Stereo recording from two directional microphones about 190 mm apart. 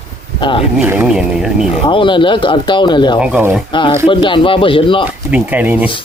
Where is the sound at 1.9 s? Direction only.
25° left (ahead or behind).